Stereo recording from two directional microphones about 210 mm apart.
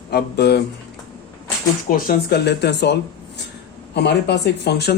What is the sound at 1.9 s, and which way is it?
Speech, 45° left (ahead or behind).